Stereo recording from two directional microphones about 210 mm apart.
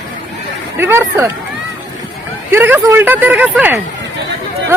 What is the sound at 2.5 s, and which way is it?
Speech, 10° right (ahead or behind).